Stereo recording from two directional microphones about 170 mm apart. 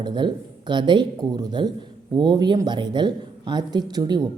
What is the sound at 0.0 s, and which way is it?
Speech, 25° right (ahead or behind).